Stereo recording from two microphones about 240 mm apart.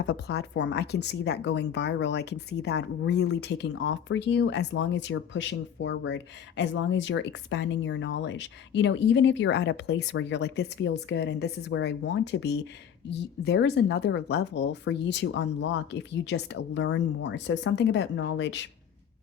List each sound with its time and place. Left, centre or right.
0.0 s speech: left